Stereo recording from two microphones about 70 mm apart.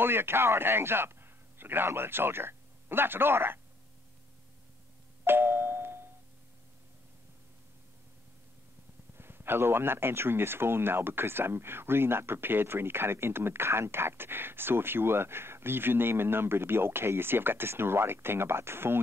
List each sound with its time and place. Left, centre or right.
0.0 s a man's voice: right
5.2 s doorbell: right
9.1 s speech: right